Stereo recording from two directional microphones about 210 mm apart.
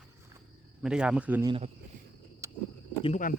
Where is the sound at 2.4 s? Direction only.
15° right (ahead or behind).